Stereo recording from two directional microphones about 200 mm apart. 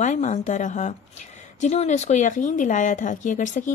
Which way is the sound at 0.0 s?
35° left (ahead or behind).